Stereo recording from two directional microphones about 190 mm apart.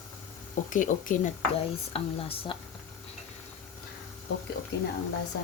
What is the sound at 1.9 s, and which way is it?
Speech, 30° left (ahead or behind).